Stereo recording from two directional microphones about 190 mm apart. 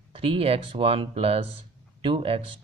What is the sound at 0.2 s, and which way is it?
Speech, 30° right (ahead or behind).